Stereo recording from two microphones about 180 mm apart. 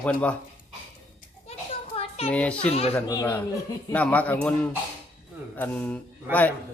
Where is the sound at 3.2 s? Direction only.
10° left (ahead or behind).